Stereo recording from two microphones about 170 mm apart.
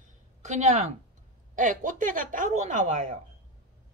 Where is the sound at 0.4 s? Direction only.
45° right (ahead or behind).